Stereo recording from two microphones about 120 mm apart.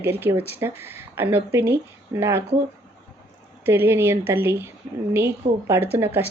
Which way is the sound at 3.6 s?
20° right (ahead or behind).